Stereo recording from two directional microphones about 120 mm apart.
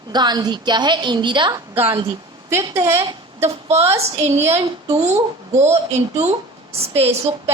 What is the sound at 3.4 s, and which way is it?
A woman's voice, 60° right (ahead or behind).